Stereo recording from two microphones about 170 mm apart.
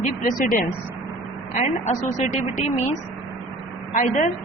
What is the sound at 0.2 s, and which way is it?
Speech, 55° left (ahead or behind).